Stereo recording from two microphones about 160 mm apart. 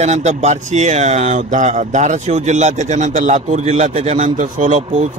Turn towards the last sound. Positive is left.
turn(degrees=-55)  # may be behind; listen again after turning